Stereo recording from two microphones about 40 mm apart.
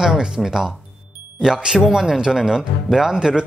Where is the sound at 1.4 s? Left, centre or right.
Centre.